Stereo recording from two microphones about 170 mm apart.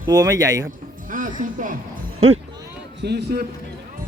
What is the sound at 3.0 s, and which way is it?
Speech, 80° right.